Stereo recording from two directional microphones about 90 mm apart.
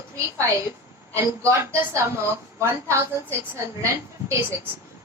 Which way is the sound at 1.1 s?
30° right (ahead or behind).